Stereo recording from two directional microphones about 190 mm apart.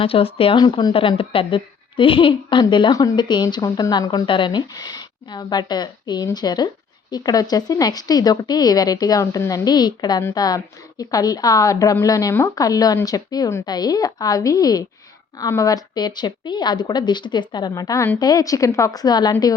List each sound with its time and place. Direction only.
0.0 s a woman's voice: 30° left (ahead or behind)